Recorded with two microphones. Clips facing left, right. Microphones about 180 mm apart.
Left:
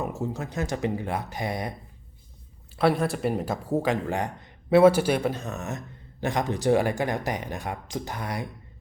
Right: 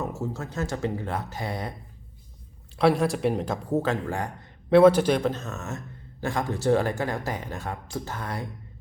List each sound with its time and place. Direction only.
0.0 s speech: 15° left (ahead or behind)
2.7 s speech: centre (ahead or behind)
4.1 s a man's voice: 20° left (ahead or behind)
4.7 s speech: 5° left (ahead or behind)